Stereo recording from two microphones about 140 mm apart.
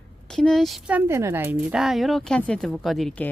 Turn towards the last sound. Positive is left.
turn(degrees=0)  # may be behind; listen again after turning